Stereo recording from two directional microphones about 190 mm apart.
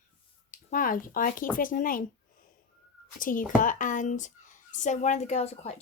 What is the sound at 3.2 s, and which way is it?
A woman's voice, 45° left (ahead or behind).